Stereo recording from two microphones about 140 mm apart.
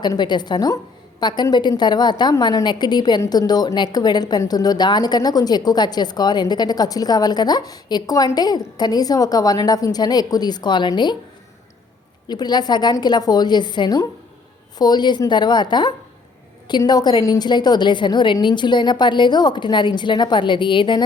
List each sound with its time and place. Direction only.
0.0 s a woman's voice: 30° left (ahead or behind)
12.3 s a woman's voice: 30° left (ahead or behind)